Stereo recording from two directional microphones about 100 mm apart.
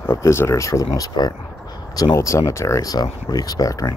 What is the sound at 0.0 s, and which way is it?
Speech, 25° left (ahead or behind).